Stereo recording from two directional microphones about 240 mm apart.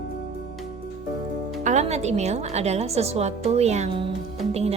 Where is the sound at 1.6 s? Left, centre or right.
Right.